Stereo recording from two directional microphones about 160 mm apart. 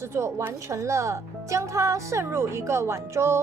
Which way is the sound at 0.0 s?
15° right (ahead or behind).